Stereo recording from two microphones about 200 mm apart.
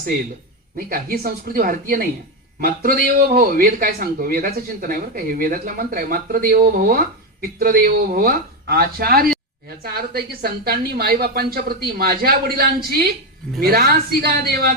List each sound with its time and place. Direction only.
0.8 s a man's voice: 45° right (ahead or behind)